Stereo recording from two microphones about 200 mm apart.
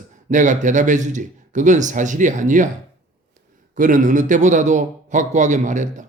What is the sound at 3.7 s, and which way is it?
A man's voice, 40° right (ahead or behind).